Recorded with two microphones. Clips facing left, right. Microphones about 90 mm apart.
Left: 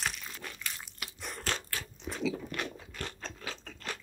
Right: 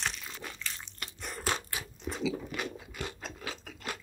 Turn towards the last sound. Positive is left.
turn(degrees=-10)  # may be behind; listen again after turning